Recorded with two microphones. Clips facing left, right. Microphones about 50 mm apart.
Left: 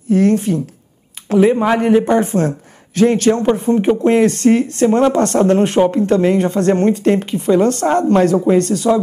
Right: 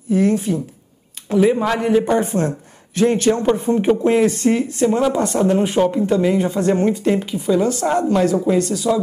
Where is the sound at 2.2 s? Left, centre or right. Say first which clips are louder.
Left 3 dB; left.